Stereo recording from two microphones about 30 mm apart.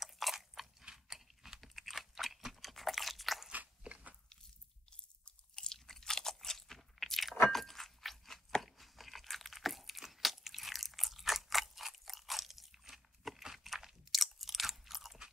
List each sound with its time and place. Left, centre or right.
0.0 s biting: centre
0.9 s a sound: centre
2.7 s biting: centre
3.5 s biting: right
5.7 s crunch: centre
14.1 s chewing: centre